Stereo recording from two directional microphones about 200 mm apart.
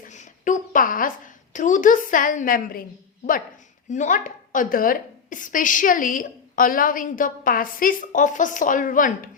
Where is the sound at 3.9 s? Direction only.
40° left (ahead or behind).